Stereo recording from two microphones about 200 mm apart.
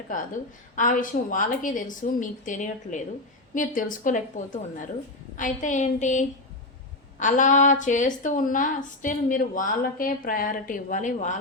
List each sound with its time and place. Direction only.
0.8 s a woman's voice: 40° left (ahead or behind)